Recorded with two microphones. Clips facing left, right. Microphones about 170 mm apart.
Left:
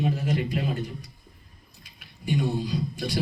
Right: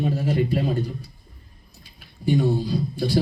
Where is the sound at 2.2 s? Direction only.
35° right (ahead or behind).